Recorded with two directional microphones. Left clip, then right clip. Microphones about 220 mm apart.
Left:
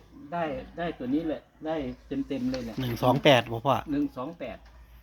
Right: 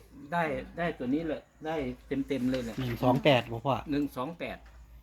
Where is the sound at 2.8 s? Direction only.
15° left (ahead or behind).